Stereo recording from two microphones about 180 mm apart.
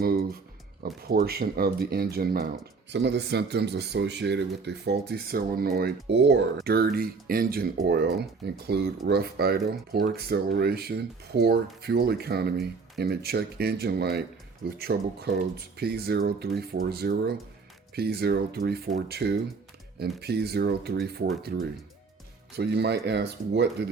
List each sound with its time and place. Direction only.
0.0 s music: 55° right (ahead or behind)
0.8 s speech: 55° right (ahead or behind); by 6.4 s 75° right (ahead or behind)
6.7 s speech: 60° right (ahead or behind)